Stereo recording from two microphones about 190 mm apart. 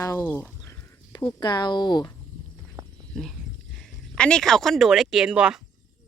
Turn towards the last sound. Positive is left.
turn(degrees=-5)  # may be behind; listen again after turning